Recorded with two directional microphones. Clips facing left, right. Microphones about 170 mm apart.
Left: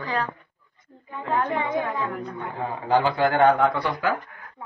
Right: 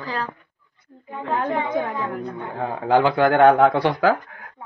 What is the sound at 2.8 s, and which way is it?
Speech, 60° right (ahead or behind).